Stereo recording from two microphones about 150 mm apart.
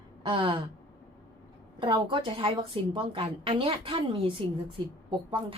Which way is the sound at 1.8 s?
35° right (ahead or behind).